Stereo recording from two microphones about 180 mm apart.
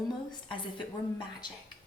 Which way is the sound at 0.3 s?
25° left (ahead or behind).